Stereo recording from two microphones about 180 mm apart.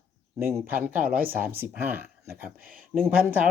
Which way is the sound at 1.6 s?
10° right (ahead or behind).